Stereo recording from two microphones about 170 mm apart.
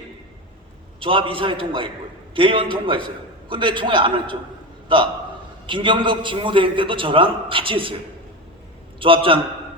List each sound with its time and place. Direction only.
0.9 s a man's voice: 30° right (ahead or behind)
5.6 s a man's voice: 30° right (ahead or behind)
9.0 s a man's voice: 30° right (ahead or behind)